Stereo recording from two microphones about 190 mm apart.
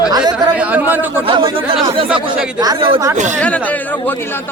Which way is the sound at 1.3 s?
25° right (ahead or behind).